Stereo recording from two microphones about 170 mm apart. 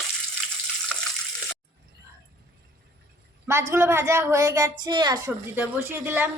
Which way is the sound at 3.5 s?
15° right (ahead or behind).